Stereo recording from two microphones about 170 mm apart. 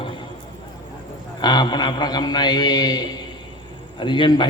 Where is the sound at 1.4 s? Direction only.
25° left (ahead or behind).